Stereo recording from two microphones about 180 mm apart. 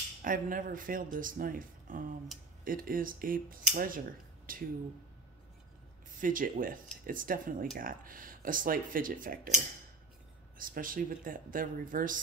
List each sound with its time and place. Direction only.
0.2 s speech: 50° right (ahead or behind)
4.5 s a sound: 50° right (ahead or behind)
6.1 s speech: 50° right (ahead or behind)
10.6 s speech: 50° right (ahead or behind)